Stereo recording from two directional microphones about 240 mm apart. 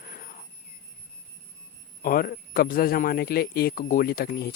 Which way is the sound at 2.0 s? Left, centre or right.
Left.